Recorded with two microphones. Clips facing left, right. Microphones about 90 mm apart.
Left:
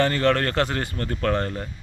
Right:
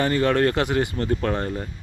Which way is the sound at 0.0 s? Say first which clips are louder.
Right 1 dB; 15° right (ahead or behind).